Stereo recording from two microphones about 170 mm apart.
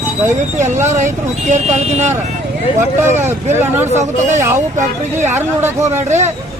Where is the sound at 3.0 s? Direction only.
45° right (ahead or behind).